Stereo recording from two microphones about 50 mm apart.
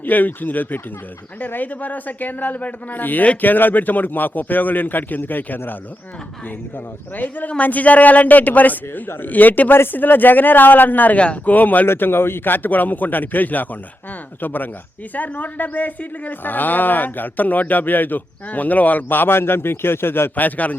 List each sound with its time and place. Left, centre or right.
0.0 s speech: left
7.2 s speech: left
11.2 s speech: left
11.5 s speech: left
11.9 s speech: left
20.3 s speech: left